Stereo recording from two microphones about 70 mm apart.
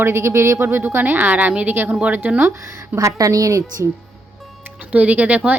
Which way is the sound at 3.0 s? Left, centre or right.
Right.